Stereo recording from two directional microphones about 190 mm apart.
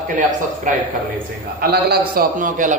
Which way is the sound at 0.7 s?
45° right (ahead or behind).